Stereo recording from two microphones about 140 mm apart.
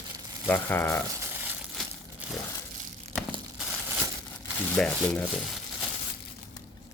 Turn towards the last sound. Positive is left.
turn(degrees=5)  # may be behind; listen again after turning